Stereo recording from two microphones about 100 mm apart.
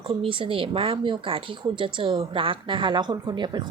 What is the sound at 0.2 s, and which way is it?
A woman's voice, 60° right (ahead or behind).